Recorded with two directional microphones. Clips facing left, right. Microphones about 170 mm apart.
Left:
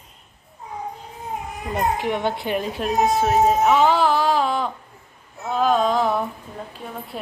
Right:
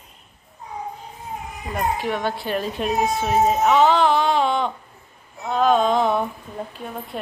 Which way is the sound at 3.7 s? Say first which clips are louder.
Right 1 dB; 10° left (ahead or behind).